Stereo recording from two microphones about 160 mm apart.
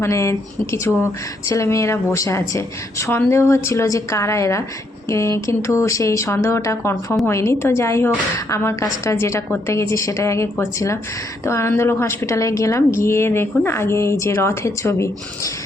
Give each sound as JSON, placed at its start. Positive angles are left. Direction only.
{"t": 0.0, "sound": "a woman's voice", "side_deg": 20}